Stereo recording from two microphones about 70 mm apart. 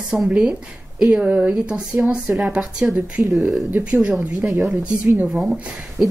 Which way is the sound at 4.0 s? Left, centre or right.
Centre.